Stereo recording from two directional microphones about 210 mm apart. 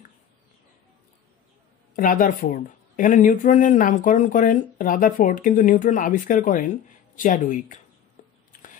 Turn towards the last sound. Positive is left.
turn(degrees=40)  # may be behind; listen again after turning